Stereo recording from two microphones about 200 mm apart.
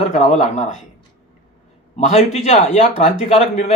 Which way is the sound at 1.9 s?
35° left (ahead or behind).